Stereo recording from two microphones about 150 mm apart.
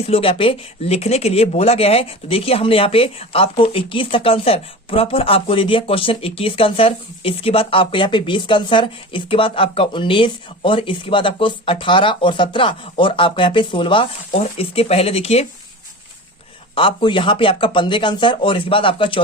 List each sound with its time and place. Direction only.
0.1 s speech: 40° left (ahead or behind)
16.7 s speech: 30° left (ahead or behind)